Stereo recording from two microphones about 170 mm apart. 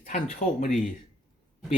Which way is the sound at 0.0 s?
50° left (ahead or behind).